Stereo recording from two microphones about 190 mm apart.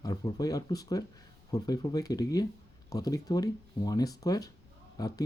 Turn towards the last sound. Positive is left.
turn(degrees=20)  # may be behind; listen again after turning